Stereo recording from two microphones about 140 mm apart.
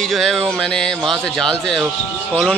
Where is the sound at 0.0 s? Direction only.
Centre (ahead or behind).